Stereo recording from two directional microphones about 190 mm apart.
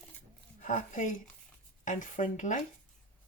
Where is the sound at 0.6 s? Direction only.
40° left (ahead or behind).